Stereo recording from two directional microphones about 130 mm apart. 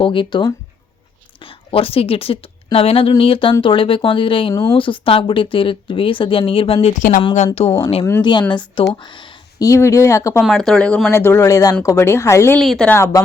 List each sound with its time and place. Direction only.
0.0 s speech: 40° left (ahead or behind)
7.0 s a woman's voice: 90° left
7.3 s speech: 55° left (ahead or behind)
8.2 s speech: 35° left (ahead or behind)
8.9 s a sound: 35° left (ahead or behind)
9.6 s speech: 20° left (ahead or behind)
10.4 s speech: 5° left (ahead or behind); by 12.5 s 20° left (ahead or behind)
12.5 s speech: 5° left (ahead or behind)
12.9 s speech: 20° left (ahead or behind)